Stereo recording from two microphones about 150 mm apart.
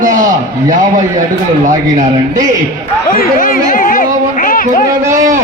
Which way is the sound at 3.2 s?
70° left (ahead or behind).